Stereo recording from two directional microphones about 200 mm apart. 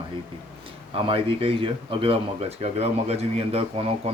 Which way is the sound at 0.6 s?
25° right (ahead or behind).